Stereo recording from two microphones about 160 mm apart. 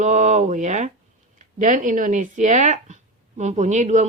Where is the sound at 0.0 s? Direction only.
50° right (ahead or behind).